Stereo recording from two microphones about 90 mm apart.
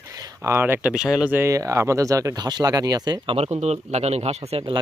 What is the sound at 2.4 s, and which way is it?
Speech, 50° right (ahead or behind).